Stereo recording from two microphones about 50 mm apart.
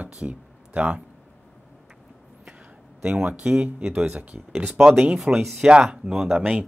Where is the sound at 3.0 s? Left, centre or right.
Right.